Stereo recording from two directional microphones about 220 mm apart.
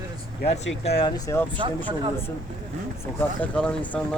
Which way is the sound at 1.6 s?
20° right (ahead or behind).